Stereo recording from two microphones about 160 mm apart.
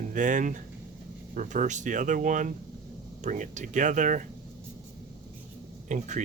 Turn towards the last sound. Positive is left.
turn(degrees=-50)  # may be behind; listen again after turning